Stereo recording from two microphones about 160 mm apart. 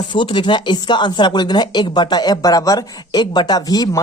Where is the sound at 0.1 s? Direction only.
30° left (ahead or behind).